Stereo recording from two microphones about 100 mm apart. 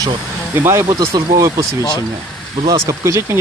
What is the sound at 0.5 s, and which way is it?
Speech, 25° right (ahead or behind).